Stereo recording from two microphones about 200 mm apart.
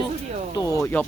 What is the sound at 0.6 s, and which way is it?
Speech, 15° left (ahead or behind).